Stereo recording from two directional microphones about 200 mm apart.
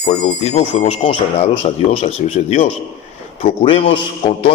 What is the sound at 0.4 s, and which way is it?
Speech, 30° left (ahead or behind).